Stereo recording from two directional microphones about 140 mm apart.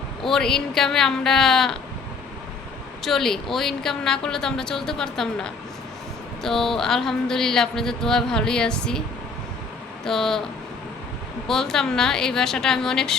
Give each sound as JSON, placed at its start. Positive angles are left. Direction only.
{"t": 0.3, "sound": "speech", "side_deg": 5}
{"t": 3.0, "sound": "speech", "side_deg": 0}
{"t": 11.4, "sound": "speech", "side_deg": 5}